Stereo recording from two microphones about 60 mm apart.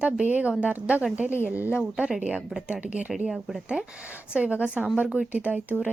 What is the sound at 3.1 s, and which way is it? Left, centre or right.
Speech, centre.